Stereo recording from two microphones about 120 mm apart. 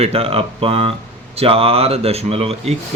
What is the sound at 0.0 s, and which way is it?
A man's voice, 55° right (ahead or behind).